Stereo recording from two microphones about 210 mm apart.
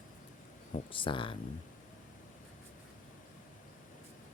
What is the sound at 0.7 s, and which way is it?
Speech, 25° left (ahead or behind).